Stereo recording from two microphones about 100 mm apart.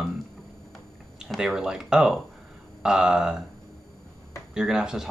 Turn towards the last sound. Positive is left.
turn(degrees=-5)  # may be behind; listen again after turning